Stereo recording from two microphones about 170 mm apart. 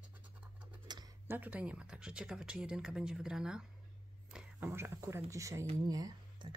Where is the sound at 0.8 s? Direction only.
25° right (ahead or behind).